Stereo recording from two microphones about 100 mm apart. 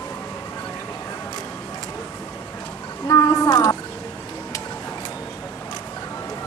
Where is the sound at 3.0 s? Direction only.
35° left (ahead or behind).